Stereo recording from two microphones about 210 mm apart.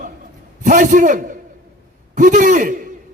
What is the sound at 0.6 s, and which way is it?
A man's voice, 40° right (ahead or behind).